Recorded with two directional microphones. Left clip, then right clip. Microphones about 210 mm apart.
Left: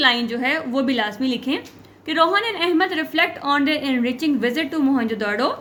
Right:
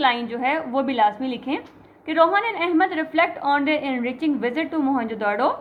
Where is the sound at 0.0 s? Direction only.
45° left (ahead or behind).